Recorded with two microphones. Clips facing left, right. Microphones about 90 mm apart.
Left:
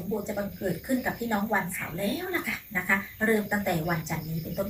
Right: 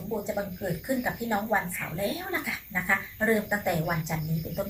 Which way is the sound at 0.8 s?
5° right (ahead or behind).